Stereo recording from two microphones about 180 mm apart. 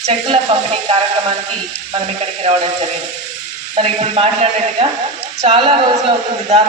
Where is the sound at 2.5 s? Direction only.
35° right (ahead or behind).